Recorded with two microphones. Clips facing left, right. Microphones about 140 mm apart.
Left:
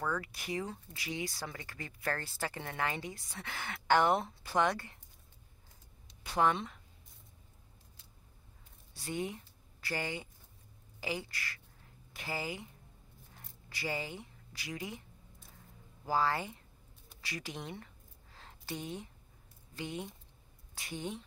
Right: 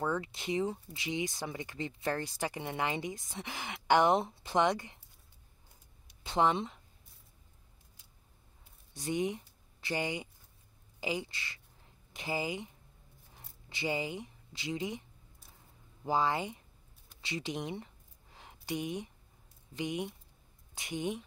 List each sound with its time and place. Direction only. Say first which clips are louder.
0.0 s speech: right 3 dB; 25° right (ahead or behind)
6.2 s speech: right 2 dB; 20° right (ahead or behind)
8.9 s a woman's voice: right 5 dB; 20° right (ahead or behind)
16.1 s speech: right 1 dB; 20° right (ahead or behind)
17.2 s a sound: right 5 dB; 25° right (ahead or behind)
19.7 s speech: right 5 dB; 15° right (ahead or behind)